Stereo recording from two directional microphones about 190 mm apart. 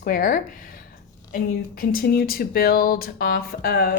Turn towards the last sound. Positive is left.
turn(degrees=55)  # may be behind; listen again after turning